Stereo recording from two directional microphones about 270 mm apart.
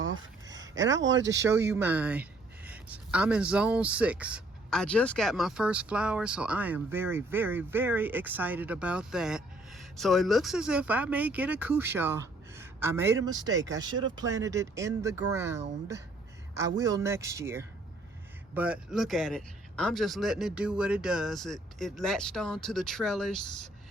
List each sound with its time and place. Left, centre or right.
0.4 s a sound: centre
0.9 s speech: right
1.7 s speech: centre